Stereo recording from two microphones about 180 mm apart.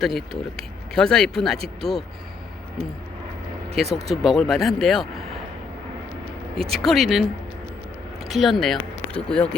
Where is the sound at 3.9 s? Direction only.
35° right (ahead or behind).